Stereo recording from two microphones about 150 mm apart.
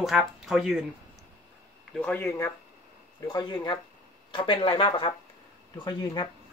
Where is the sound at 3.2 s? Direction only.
25° left (ahead or behind).